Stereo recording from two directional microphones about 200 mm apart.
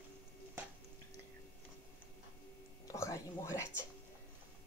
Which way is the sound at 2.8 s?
15° left (ahead or behind).